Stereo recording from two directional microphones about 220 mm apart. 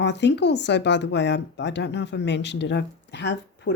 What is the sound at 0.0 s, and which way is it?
Speech, 50° left (ahead or behind).